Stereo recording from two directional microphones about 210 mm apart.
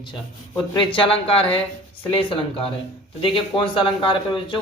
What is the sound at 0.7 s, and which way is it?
Speech, 25° left (ahead or behind).